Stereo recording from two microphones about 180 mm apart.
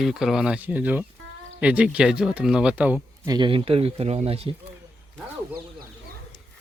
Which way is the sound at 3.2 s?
25° right (ahead or behind).